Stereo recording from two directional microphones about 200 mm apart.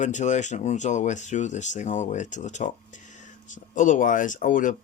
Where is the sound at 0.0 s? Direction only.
35° left (ahead or behind).